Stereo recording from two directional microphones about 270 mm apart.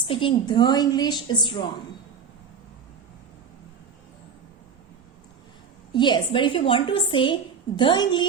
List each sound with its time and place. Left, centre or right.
0.0 s a woman's voice: centre
5.9 s a woman's voice: centre